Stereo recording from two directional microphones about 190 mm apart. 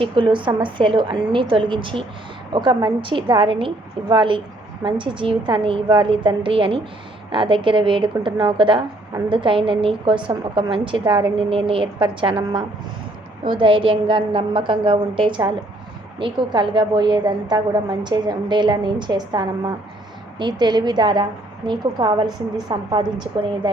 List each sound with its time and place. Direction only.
0.0 s a woman's voice: 25° right (ahead or behind)